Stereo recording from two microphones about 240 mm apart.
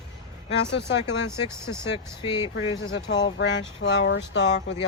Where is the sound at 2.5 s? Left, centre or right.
Left.